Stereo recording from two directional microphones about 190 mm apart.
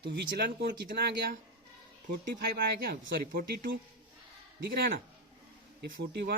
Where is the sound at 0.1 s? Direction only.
65° right (ahead or behind).